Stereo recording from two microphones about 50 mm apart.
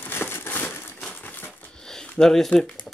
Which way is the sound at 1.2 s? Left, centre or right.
Left.